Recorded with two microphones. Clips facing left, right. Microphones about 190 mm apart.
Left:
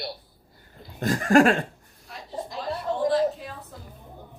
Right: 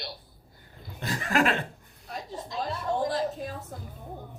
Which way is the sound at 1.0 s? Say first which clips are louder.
Left 8 dB; 45° left (ahead or behind).